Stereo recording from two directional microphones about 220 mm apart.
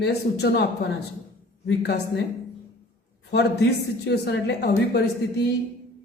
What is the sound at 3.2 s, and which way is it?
A man's voice, 50° left (ahead or behind).